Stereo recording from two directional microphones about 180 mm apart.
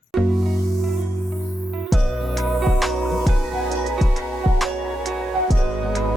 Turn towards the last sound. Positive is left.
turn(degrees=0)  # may be behind; listen again after turning